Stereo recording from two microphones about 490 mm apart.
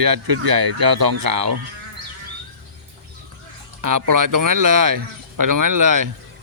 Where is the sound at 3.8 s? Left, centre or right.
Right.